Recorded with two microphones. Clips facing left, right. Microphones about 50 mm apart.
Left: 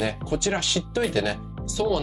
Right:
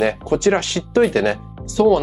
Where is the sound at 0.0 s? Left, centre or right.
Right.